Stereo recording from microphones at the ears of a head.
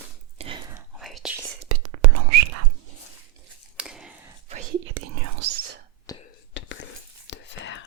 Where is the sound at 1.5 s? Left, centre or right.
Right.